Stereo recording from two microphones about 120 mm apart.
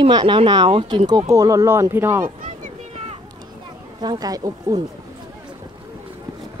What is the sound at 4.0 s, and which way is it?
Speech, 35° right (ahead or behind).